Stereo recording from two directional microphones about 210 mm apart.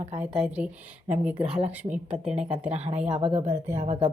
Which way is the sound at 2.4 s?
25° right (ahead or behind).